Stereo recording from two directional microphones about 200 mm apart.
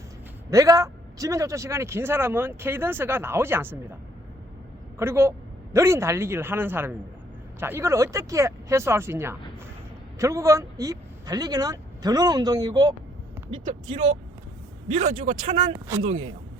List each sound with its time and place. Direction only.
0.5 s a man's voice: 15° right (ahead or behind)
4.9 s a man's voice: 10° right (ahead or behind)
13.9 s speech: 30° right (ahead or behind)